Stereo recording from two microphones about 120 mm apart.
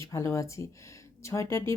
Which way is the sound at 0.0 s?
25° left (ahead or behind).